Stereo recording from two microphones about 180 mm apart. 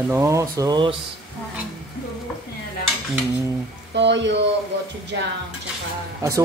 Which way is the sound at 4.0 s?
75° right (ahead or behind).